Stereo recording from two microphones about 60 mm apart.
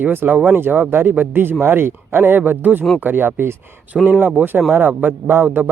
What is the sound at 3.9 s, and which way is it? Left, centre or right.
Speech, centre.